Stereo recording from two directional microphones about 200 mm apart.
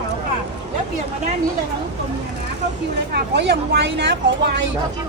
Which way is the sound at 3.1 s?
55° right (ahead or behind).